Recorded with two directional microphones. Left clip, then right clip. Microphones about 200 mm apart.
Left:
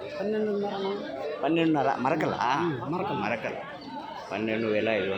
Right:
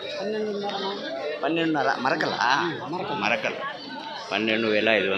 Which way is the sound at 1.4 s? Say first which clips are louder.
Right 1 dB; 25° left (ahead or behind).